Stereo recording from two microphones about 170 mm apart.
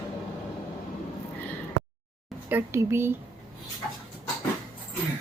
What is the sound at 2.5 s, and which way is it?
Speech, 15° right (ahead or behind).